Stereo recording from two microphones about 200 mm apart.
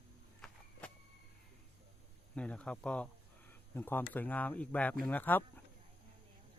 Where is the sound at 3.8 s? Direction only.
10° left (ahead or behind).